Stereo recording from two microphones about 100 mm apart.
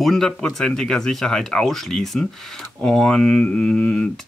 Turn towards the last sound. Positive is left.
turn(degrees=10)  # may be behind; listen again after turning